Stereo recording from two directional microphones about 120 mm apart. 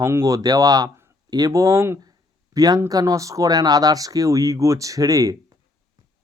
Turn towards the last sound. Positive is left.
turn(degrees=-30)  # may be behind; listen again after turning